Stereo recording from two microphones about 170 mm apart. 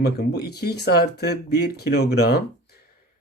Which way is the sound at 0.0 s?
70° left (ahead or behind).